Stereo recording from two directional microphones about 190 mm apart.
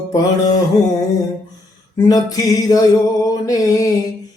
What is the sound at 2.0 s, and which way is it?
Music, 20° left (ahead or behind).